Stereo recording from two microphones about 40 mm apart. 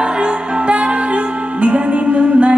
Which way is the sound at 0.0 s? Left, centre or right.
Right.